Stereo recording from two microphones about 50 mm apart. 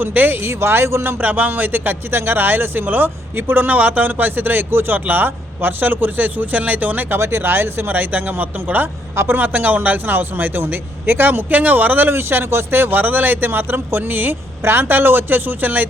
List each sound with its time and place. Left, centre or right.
0.0 s speech: right
0.5 s speech: right
1.0 s speech: right
7.2 s speech: right
7.9 s speech: right
9.1 s speech: right
9.4 s speech: right
14.6 s speech: right